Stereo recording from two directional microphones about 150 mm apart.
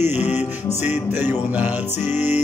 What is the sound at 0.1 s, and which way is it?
Music, 45° left (ahead or behind).